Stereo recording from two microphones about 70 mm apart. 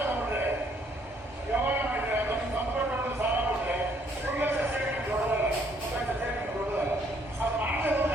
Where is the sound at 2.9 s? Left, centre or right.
Right.